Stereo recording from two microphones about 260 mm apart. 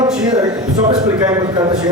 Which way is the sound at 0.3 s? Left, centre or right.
Centre.